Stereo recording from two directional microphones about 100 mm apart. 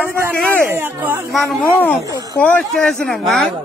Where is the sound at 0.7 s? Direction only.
20° right (ahead or behind).